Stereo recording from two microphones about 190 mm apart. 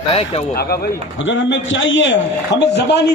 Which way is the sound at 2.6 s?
65° left (ahead or behind).